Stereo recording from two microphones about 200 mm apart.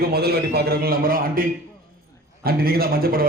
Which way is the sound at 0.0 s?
50° right (ahead or behind).